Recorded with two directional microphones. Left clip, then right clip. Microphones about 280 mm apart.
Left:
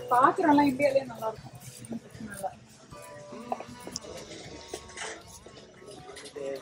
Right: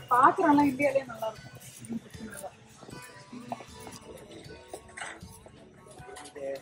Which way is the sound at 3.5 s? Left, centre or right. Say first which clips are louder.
Left 5 dB; centre.